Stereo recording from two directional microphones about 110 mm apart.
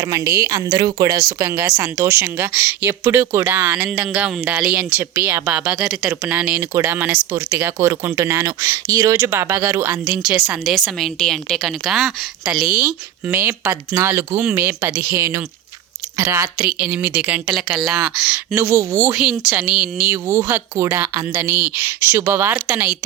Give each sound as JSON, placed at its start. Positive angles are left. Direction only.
{"t": 0.0, "sound": "speech", "side_deg": -30}
{"t": 6.6, "sound": "a woman's voice", "side_deg": -20}
{"t": 12.6, "sound": "speech", "side_deg": -15}
{"t": 16.6, "sound": "speech", "side_deg": -10}
{"t": 18.5, "sound": "speech", "side_deg": -20}
{"t": 19.1, "sound": "speech", "side_deg": -5}
{"t": 20.1, "sound": "speech", "side_deg": -25}